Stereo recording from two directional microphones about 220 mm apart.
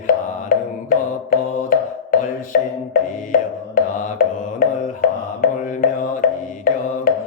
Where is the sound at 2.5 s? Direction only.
40° left (ahead or behind).